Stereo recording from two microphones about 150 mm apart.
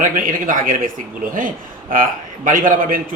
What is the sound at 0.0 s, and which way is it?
A man's voice, 65° right (ahead or behind).